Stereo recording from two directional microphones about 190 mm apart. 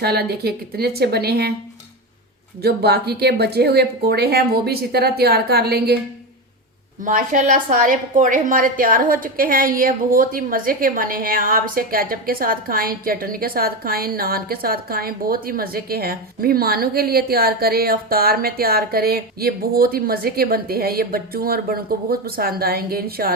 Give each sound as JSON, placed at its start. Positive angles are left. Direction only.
{"t": 0.0, "sound": "a woman's voice", "side_deg": -55}
{"t": 2.6, "sound": "a woman's voice", "side_deg": -55}
{"t": 7.0, "sound": "a woman's voice", "side_deg": -45}